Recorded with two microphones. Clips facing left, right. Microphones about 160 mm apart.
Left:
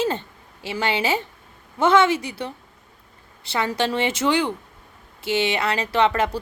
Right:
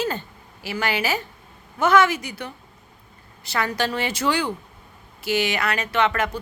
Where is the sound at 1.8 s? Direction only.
25° left (ahead or behind).